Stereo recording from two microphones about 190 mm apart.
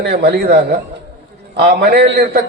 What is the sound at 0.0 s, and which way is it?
A man's voice, 60° right (ahead or behind).